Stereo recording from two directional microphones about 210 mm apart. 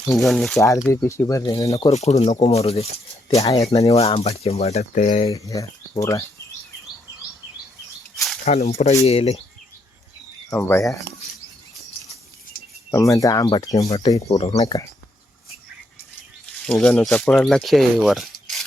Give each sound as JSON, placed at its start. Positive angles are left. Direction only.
{"t": 0.0, "sound": "speech", "side_deg": 0}
{"t": 0.9, "sound": "speech", "side_deg": 10}
{"t": 1.9, "sound": "speech", "side_deg": 30}
{"t": 3.2, "sound": "speech", "side_deg": 15}
{"t": 3.7, "sound": "speech", "side_deg": 30}
{"t": 5.3, "sound": "speech", "side_deg": 15}
{"t": 8.1, "sound": "a sound", "side_deg": 0}
{"t": 8.4, "sound": "speech", "side_deg": 30}
{"t": 10.5, "sound": "speech", "side_deg": 15}
{"t": 12.9, "sound": "speech", "side_deg": 15}
{"t": 16.6, "sound": "speech", "side_deg": 5}